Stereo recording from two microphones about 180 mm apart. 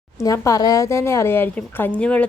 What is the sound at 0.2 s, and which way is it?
A woman's voice, 20° left (ahead or behind).